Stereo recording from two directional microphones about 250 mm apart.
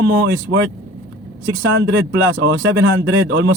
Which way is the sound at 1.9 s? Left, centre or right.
Right.